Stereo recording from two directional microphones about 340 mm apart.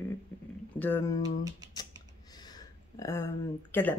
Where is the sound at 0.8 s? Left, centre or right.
Centre.